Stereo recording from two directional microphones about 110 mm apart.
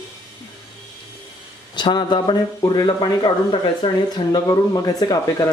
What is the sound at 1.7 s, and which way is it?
Speech, 45° left (ahead or behind).